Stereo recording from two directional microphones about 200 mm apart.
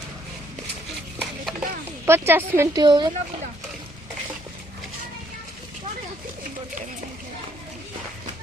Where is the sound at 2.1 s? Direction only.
10° right (ahead or behind).